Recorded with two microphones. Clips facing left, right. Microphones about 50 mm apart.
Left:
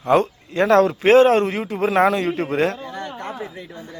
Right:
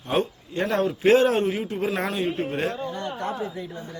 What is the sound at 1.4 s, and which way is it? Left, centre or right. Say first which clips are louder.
A man's voice: left 4 dB; left.